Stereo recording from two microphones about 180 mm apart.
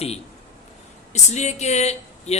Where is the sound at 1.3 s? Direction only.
40° left (ahead or behind).